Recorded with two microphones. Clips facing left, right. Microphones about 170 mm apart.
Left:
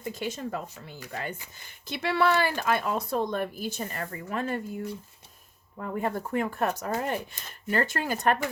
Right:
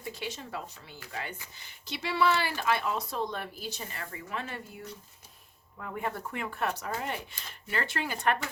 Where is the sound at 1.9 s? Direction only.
55° left (ahead or behind).